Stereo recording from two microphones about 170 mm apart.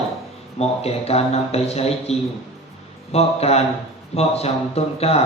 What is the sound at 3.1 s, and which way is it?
A man's voice, 40° left (ahead or behind).